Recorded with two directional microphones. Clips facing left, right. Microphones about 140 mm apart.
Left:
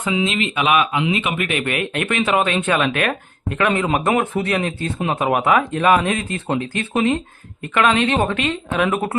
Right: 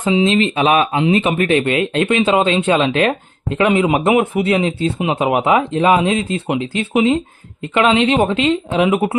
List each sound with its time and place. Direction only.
0.0 s speech: 30° right (ahead or behind)